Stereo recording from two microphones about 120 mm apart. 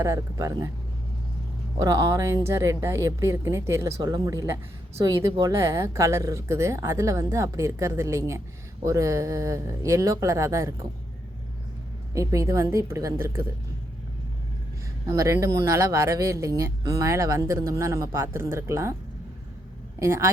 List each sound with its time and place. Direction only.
0.0 s speech: 30° right (ahead or behind)
1.8 s speech: 30° right (ahead or behind)
12.1 s speech: 25° right (ahead or behind)
15.0 s speech: 25° right (ahead or behind)
20.0 s speech: 25° right (ahead or behind)